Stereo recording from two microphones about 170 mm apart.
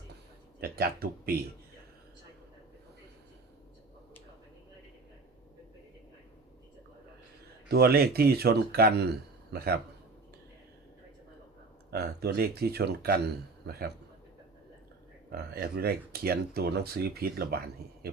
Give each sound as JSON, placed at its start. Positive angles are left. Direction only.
{"t": 0.6, "sound": "speech", "side_deg": -65}
{"t": 7.7, "sound": "speech", "side_deg": -65}
{"t": 11.9, "sound": "speech", "side_deg": -70}
{"t": 15.3, "sound": "speech", "side_deg": -65}